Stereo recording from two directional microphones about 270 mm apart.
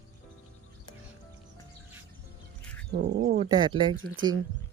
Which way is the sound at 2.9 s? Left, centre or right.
Right.